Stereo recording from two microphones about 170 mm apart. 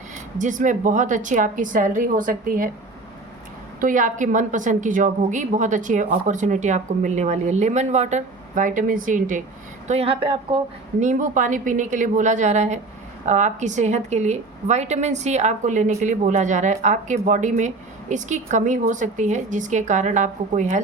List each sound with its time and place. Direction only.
0.3 s a woman's voice: 50° right (ahead or behind)
3.8 s a woman's voice: 50° right (ahead or behind)
9.8 s speech: 40° right (ahead or behind)
11.0 s a woman's voice: 45° right (ahead or behind)